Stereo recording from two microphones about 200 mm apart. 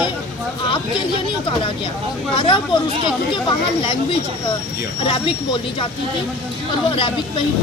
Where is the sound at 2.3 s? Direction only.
25° left (ahead or behind).